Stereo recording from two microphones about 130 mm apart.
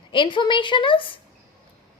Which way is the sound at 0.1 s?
40° left (ahead or behind).